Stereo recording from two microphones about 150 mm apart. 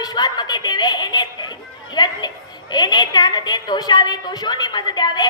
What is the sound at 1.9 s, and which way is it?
A woman's voice, 30° left (ahead or behind).